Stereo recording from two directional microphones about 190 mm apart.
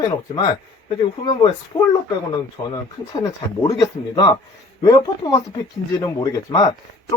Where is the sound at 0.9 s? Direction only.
25° left (ahead or behind).